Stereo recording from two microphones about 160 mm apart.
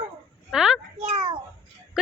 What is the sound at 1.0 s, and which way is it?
Speech, 50° right (ahead or behind).